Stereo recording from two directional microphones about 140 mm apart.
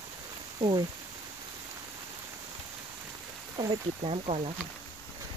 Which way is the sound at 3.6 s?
45° right (ahead or behind).